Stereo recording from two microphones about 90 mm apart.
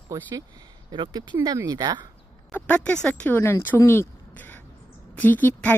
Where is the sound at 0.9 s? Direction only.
60° right (ahead or behind).